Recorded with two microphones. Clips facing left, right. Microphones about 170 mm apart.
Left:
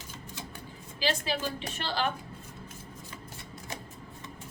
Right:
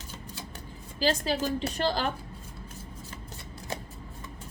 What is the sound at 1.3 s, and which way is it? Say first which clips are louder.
Speech: right 5 dB; 40° right (ahead or behind).